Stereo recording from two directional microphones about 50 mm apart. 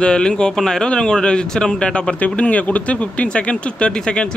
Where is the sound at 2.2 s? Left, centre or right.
Left.